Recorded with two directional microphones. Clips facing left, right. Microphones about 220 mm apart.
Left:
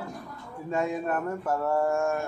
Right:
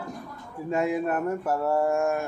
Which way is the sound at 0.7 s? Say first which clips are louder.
Right 3 dB; 20° right (ahead or behind).